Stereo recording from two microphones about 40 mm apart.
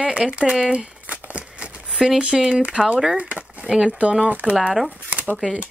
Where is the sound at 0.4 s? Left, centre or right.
Centre.